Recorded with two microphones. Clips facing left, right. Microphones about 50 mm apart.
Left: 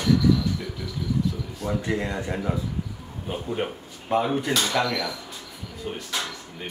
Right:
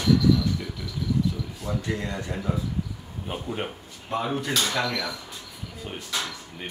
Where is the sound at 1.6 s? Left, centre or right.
Centre.